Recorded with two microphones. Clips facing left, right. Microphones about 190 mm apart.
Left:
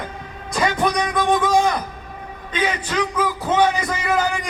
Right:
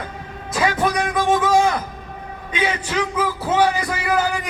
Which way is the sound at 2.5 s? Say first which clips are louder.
Even; 10° right (ahead or behind).